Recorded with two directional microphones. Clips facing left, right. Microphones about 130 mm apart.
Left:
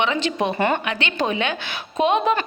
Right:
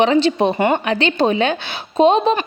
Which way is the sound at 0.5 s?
20° right (ahead or behind).